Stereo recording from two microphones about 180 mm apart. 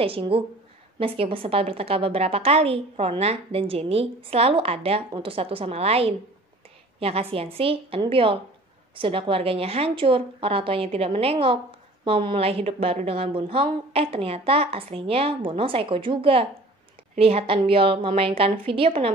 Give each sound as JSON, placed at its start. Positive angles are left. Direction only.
{"t": 0.0, "sound": "a woman's voice", "side_deg": -30}